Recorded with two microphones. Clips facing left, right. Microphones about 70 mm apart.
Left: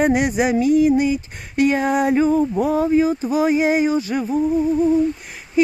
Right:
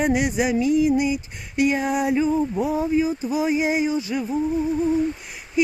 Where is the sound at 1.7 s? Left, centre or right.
Left.